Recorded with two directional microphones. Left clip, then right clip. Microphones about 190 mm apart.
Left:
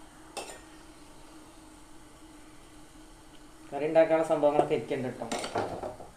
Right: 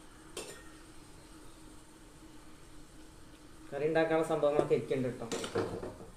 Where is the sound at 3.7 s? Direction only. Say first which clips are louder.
Left 6 dB; 60° left (ahead or behind).